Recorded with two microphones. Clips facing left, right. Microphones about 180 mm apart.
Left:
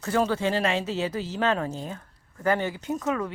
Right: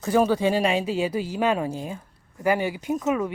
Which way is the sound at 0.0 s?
15° right (ahead or behind).